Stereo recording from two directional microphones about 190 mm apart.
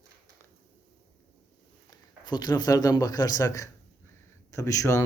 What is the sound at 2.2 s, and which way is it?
A man's voice, 20° left (ahead or behind).